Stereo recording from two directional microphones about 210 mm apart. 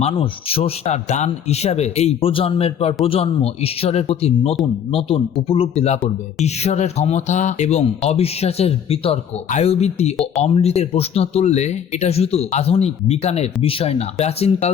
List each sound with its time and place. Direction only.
0.0 s speech: 30° left (ahead or behind)